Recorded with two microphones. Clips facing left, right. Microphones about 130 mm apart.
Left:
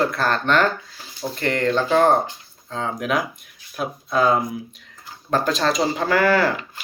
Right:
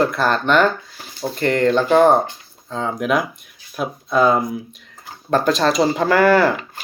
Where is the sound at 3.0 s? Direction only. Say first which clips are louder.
Right 5 dB; centre (ahead or behind).